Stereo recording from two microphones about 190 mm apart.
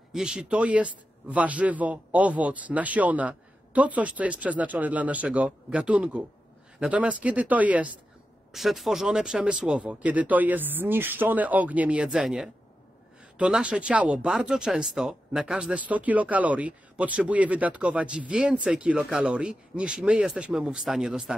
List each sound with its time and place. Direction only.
0.1 s a man's voice: 5° right (ahead or behind)